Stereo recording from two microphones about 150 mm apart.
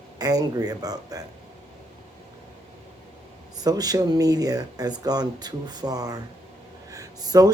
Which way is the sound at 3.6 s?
25° right (ahead or behind).